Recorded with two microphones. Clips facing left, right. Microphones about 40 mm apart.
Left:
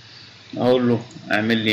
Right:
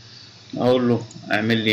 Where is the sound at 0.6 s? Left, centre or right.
Centre.